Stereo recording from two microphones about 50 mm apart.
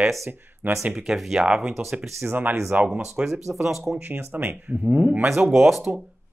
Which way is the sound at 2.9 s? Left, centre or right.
Centre.